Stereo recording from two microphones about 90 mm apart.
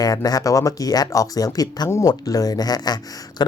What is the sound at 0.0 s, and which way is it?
Speech, 40° left (ahead or behind).